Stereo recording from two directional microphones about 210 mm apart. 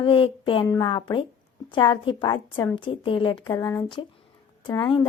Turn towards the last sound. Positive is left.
turn(degrees=20)  # may be behind; listen again after turning